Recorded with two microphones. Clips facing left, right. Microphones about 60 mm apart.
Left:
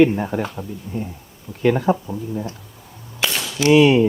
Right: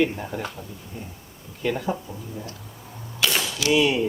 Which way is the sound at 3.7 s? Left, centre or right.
Left.